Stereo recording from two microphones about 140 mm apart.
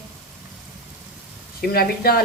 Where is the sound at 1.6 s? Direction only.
90° left.